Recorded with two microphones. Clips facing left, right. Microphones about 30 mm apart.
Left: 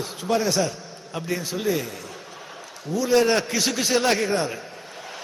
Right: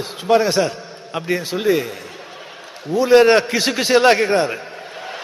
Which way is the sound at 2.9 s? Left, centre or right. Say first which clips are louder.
Right 8 dB; right.